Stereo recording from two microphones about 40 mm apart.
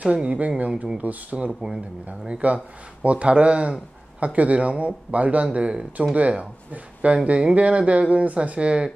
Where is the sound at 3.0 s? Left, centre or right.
Right.